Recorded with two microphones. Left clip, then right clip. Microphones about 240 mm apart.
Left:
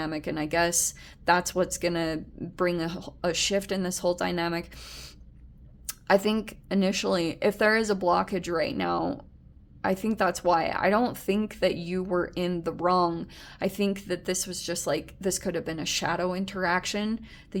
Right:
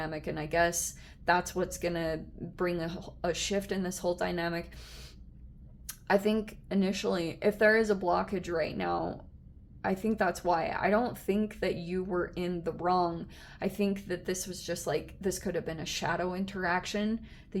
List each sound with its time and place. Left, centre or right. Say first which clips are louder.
0.0 s speech: left 5 dB; left